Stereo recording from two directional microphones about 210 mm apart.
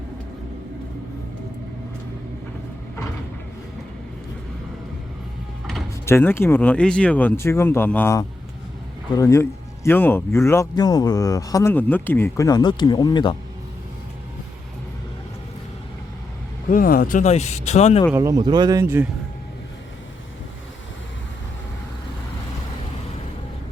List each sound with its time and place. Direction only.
6.1 s speech: 10° left (ahead or behind)
16.6 s speech: 40° left (ahead or behind)
18.1 s speech: 15° right (ahead or behind)